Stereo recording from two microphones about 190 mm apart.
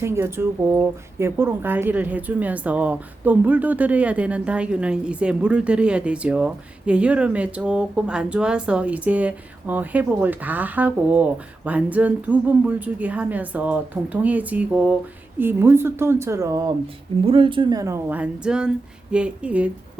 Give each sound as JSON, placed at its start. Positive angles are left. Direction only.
{"t": 0.0, "sound": "speech", "side_deg": -15}
{"t": 17.2, "sound": "speech", "side_deg": -25}